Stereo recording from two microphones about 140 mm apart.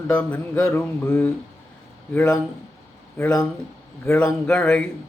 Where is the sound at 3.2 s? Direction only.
15° left (ahead or behind).